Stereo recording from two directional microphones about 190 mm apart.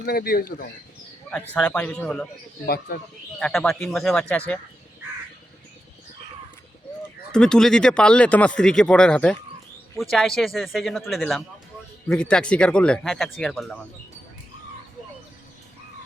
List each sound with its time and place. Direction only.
0.0 s speech: 55° left (ahead or behind)
1.3 s speech: 5° left (ahead or behind)
2.6 s speech: 50° left (ahead or behind)
3.4 s speech: 5° left (ahead or behind)
7.3 s speech: 5° left (ahead or behind)